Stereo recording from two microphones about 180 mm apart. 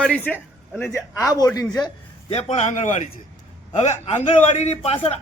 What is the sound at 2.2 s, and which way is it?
Speech, 35° left (ahead or behind).